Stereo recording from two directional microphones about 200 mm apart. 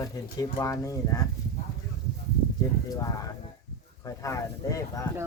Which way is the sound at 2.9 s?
15° left (ahead or behind).